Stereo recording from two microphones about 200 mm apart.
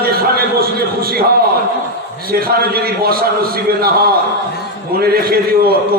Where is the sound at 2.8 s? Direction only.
50° right (ahead or behind).